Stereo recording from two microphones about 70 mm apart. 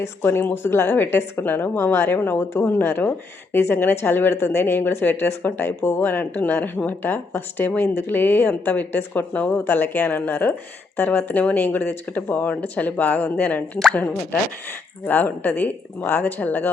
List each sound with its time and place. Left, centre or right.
0.0 s a woman's voice: left
15.0 s a woman's voice: left